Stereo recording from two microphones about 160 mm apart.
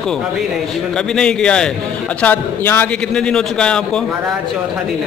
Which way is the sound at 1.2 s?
5° left (ahead or behind).